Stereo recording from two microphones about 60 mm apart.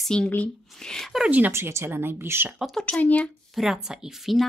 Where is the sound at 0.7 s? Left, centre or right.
Centre.